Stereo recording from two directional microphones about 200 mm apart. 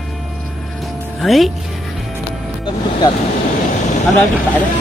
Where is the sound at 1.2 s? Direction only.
Centre (ahead or behind).